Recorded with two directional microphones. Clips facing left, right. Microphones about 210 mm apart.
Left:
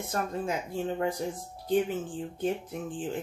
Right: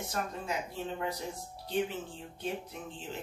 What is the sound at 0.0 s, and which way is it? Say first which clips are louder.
Speech: left 5 dB; 50° left (ahead or behind).